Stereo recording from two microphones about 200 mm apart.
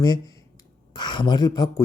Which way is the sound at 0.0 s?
20° left (ahead or behind).